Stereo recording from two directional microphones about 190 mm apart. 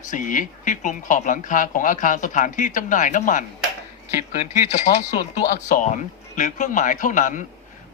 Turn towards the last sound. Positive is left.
turn(degrees=40)  # may be behind; listen again after turning